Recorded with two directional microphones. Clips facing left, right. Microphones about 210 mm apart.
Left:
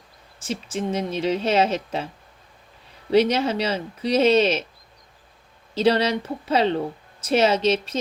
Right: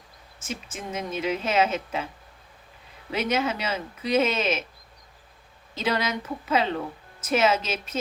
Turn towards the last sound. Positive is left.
turn(degrees=35)  # may be behind; listen again after turning